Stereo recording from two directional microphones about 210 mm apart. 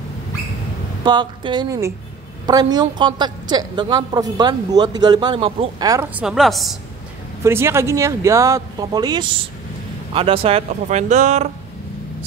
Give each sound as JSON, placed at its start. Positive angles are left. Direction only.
{"t": 1.0, "sound": "a woman's voice", "side_deg": -20}
{"t": 6.1, "sound": "a woman's voice", "side_deg": 0}
{"t": 7.4, "sound": "speech", "side_deg": -10}